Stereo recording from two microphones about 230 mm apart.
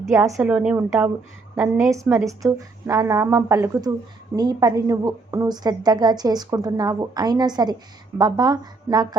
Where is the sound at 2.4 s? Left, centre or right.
Centre.